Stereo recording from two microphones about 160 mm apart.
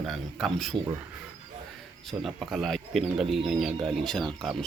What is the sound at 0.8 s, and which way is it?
Speech, 20° right (ahead or behind).